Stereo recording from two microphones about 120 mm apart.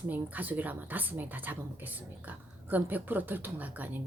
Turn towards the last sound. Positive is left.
turn(degrees=-15)  # may be behind; listen again after turning